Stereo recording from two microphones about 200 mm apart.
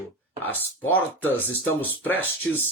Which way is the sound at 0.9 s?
10° left (ahead or behind).